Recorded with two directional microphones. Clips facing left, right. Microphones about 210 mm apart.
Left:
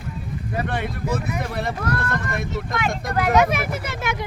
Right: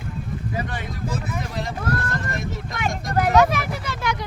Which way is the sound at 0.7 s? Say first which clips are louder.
Left 4 dB; 60° left (ahead or behind).